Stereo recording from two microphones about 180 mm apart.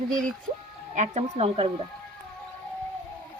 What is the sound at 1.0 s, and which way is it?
Speech, 35° right (ahead or behind).